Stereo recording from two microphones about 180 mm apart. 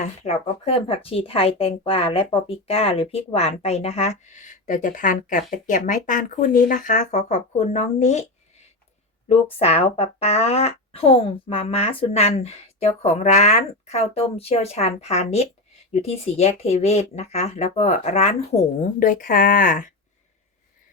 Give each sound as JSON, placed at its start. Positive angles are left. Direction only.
{"t": 0.0, "sound": "speech", "side_deg": 35}
{"t": 9.3, "sound": "speech", "side_deg": 35}
{"t": 18.9, "sound": "speech", "side_deg": 50}